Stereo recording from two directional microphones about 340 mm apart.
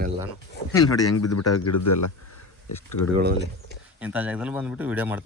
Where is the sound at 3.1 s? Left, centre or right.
Right.